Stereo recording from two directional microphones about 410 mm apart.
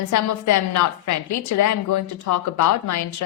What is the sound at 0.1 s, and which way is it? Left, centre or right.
A woman's voice, left.